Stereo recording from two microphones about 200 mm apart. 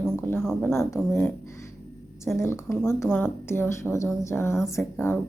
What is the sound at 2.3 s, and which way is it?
Speech, 15° left (ahead or behind).